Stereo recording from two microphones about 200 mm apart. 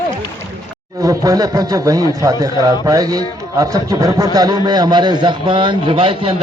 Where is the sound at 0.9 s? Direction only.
15° right (ahead or behind).